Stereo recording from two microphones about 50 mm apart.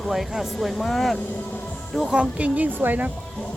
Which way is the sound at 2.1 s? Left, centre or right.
Right.